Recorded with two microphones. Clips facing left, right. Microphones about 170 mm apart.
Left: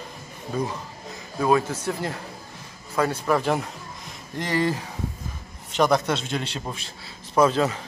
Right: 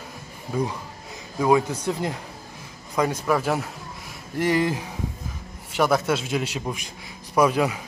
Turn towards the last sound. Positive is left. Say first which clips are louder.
# even
turn(degrees=-10)  # may be behind; listen again after turning